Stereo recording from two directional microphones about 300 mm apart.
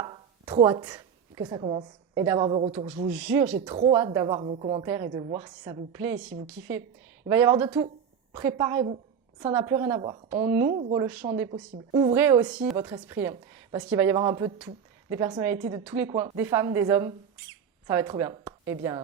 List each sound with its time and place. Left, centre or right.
0.0 s a sound: centre
2.1 s a woman's voice: centre
3.1 s speech: centre
3.6 s a woman's voice: centre